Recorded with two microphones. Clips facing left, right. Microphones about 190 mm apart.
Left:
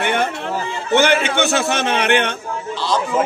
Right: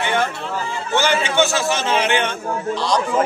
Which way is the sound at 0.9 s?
60° left (ahead or behind).